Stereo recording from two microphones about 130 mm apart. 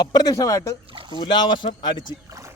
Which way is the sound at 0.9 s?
40° right (ahead or behind).